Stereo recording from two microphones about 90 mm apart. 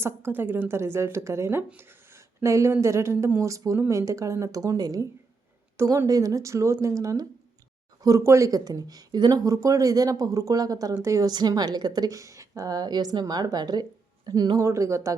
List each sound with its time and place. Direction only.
0.0 s speech: 25° right (ahead or behind); by 5.0 s 40° right (ahead or behind)
5.7 s speech: 30° right (ahead or behind)
11.3 s a woman's voice: 50° right (ahead or behind)
14.6 s speech: 35° right (ahead or behind)